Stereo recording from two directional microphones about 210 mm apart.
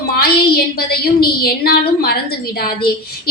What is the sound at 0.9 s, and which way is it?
A woman's voice, 45° left (ahead or behind).